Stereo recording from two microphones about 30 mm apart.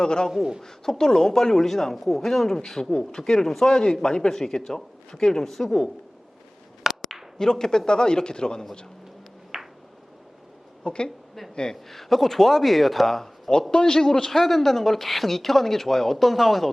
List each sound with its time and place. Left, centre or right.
0.0 s speech: left
7.0 s speech: centre
9.5 s a sound: centre
10.8 s a woman's voice: left
11.9 s speech: centre
13.5 s speech: left
14.3 s speech: centre